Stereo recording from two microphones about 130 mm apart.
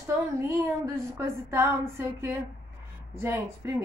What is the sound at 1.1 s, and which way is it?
A woman's voice, 20° right (ahead or behind).